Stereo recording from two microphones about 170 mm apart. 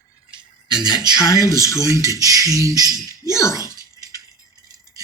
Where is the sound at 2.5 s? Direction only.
20° right (ahead or behind).